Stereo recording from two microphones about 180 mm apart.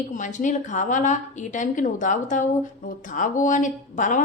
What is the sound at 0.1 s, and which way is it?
A woman's voice, 45° left (ahead or behind).